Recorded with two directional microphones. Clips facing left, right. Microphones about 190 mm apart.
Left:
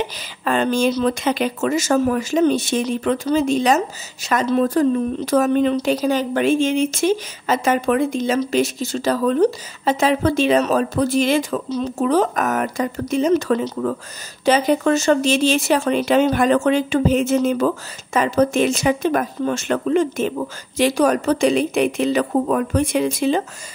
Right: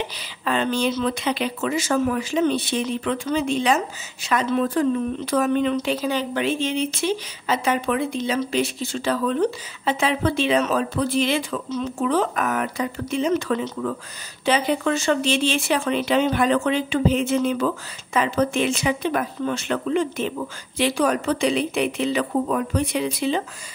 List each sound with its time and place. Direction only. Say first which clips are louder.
0.5 s speech: left 4 dB; 45° left (ahead or behind)